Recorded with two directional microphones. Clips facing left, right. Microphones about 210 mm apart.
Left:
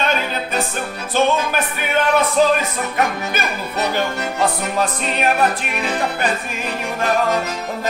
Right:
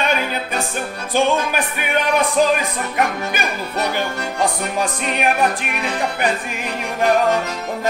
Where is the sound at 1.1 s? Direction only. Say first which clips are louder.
Even; 15° right (ahead or behind).